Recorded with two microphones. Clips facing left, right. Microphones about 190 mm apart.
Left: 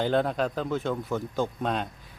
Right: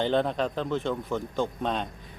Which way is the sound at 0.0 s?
5° left (ahead or behind).